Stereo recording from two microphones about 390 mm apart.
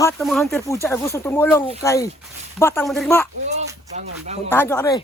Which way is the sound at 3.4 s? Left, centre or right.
Centre.